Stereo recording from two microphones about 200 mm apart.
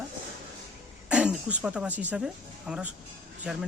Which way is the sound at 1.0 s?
5° right (ahead or behind).